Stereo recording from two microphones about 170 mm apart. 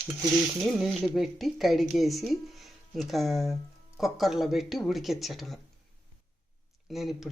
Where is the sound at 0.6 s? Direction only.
Centre (ahead or behind).